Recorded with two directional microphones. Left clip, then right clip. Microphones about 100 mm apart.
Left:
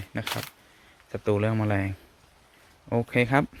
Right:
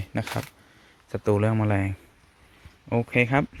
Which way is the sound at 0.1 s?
65° right (ahead or behind).